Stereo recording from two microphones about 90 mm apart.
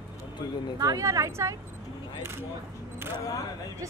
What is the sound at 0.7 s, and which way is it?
Speech, 40° right (ahead or behind).